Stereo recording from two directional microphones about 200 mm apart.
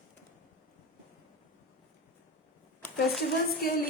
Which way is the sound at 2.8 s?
5° left (ahead or behind).